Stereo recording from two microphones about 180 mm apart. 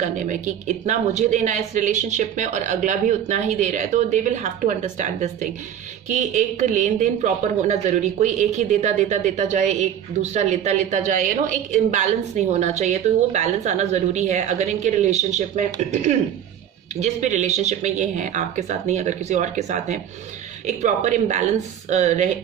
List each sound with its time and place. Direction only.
0.0 s a woman's voice: 45° right (ahead or behind)